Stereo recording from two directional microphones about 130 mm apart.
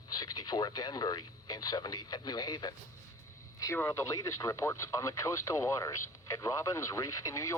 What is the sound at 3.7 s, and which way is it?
Speech, 25° left (ahead or behind).